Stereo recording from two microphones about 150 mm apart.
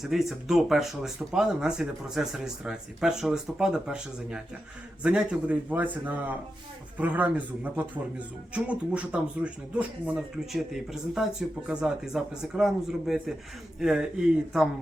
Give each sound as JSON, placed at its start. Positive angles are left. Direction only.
{"t": 0.0, "sound": "a man's voice", "side_deg": 0}